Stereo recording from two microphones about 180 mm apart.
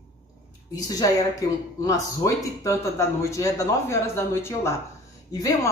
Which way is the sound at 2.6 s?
15° left (ahead or behind).